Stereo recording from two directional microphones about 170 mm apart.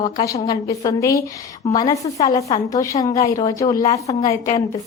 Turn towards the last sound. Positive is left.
turn(degrees=20)  # may be behind; listen again after turning